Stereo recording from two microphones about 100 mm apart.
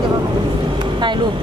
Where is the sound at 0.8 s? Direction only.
50° right (ahead or behind).